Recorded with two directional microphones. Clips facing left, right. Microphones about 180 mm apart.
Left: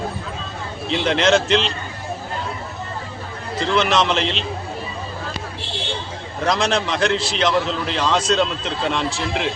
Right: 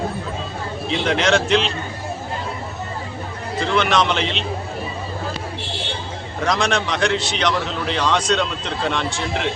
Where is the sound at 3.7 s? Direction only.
Centre (ahead or behind).